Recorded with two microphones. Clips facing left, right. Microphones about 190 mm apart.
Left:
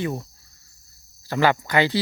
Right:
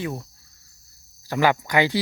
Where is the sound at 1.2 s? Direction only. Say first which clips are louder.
Even; 10° right (ahead or behind).